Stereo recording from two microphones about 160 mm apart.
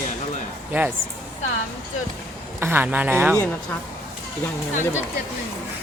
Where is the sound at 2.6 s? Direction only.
15° right (ahead or behind).